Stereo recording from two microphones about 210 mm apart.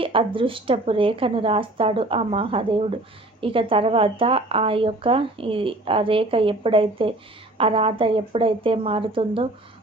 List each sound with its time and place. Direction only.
0.0 s a woman's voice: 25° right (ahead or behind)